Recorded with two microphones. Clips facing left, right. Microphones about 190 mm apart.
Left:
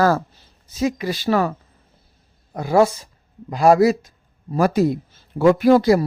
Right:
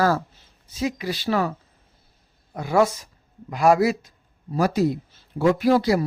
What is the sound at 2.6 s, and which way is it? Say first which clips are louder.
A man's voice: left 4 dB; 35° left (ahead or behind).